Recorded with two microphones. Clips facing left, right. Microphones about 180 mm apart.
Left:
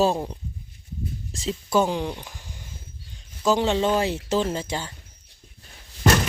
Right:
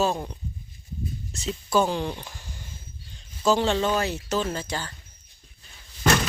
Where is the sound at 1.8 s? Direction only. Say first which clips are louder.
Left 1 dB; 15° left (ahead or behind).